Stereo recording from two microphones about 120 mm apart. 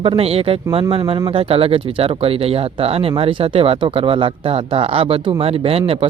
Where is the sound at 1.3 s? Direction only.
50° right (ahead or behind).